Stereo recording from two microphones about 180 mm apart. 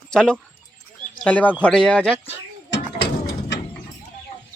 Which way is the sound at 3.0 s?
65° left (ahead or behind).